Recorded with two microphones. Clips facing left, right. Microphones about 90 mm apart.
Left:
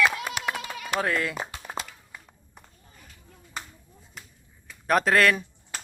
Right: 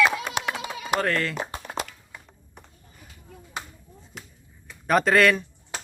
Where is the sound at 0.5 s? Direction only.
20° right (ahead or behind).